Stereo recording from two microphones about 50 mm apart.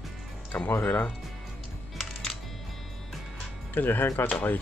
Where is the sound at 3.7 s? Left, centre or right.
Left.